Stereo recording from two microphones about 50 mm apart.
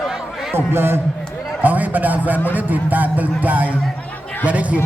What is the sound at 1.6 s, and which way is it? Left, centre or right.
Speech, right.